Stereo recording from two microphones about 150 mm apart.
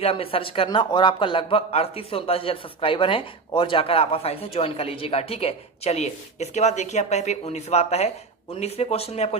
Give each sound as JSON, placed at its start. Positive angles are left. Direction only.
{"t": 0.0, "sound": "speech", "side_deg": 40}